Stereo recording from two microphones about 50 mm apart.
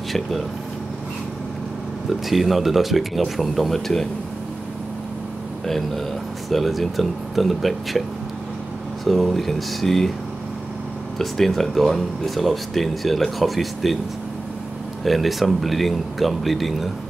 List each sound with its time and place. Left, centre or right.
2.2 s speech: centre
5.7 s speech: centre
9.0 s speech: centre
11.1 s speech: centre
15.0 s speech: centre